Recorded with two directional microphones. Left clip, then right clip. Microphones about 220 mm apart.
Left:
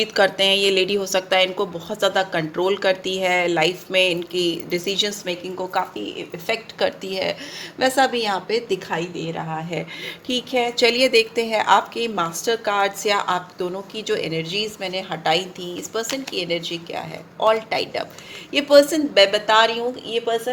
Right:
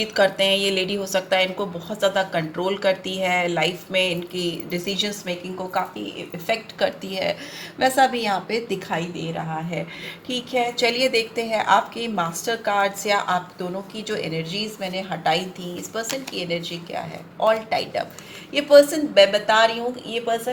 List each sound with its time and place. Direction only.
0.0 s a woman's voice: 50° left (ahead or behind)
9.3 s speech: 50° left (ahead or behind)